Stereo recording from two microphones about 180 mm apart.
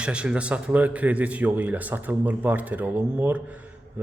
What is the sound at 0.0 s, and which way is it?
Speech, 5° right (ahead or behind).